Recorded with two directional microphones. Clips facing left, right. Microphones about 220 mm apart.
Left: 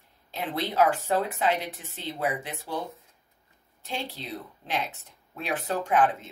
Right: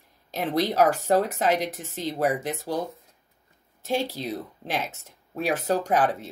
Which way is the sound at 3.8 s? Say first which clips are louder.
Right 8 dB; 40° right (ahead or behind).